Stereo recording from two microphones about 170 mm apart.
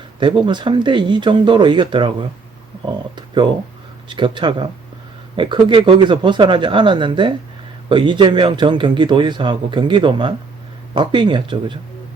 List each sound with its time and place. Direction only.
0.2 s a man's voice: 30° right (ahead or behind)
3.2 s a man's voice: 30° right (ahead or behind)